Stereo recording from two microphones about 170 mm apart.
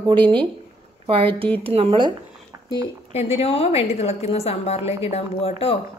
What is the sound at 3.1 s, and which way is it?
A woman's voice, 35° left (ahead or behind).